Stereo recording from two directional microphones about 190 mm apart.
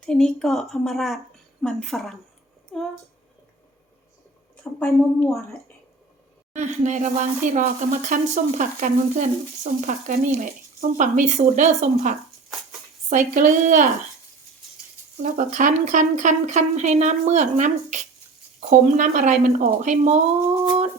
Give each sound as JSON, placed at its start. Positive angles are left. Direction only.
{"t": 0.0, "sound": "a woman's voice", "side_deg": 5}
{"t": 4.6, "sound": "a woman's voice", "side_deg": 0}
{"t": 6.5, "sound": "speech", "side_deg": -40}
{"t": 15.2, "sound": "speech", "side_deg": -45}
{"t": 20.5, "sound": "a sound", "side_deg": -30}